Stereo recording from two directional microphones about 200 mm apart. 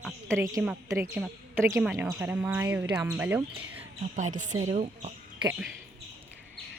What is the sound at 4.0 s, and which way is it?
A woman's voice, 40° right (ahead or behind).